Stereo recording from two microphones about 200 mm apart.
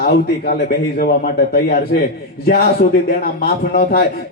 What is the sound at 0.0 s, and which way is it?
Speech, 55° left (ahead or behind).